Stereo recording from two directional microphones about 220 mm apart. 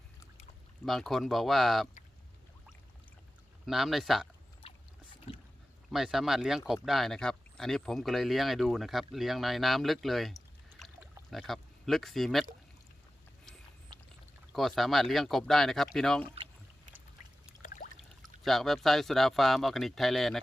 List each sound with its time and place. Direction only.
0.9 s speech: centre (ahead or behind)
3.7 s speech: centre (ahead or behind)
5.3 s boat: 25° left (ahead or behind)
5.9 s speech: centre (ahead or behind)
10.8 s pour: centre (ahead or behind)
14.5 s speech: centre (ahead or behind)
16.3 s rowboat: 25° right (ahead or behind)
17.6 s pour: 40° left (ahead or behind)
18.4 s speech: centre (ahead or behind)